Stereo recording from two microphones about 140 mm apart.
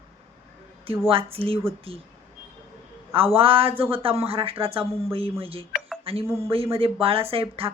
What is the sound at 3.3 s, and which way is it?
Speech, 40° right (ahead or behind).